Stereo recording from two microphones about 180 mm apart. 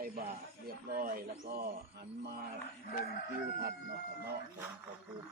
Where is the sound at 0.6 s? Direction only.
55° right (ahead or behind).